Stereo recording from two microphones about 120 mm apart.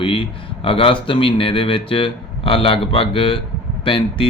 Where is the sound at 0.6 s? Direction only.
50° left (ahead or behind).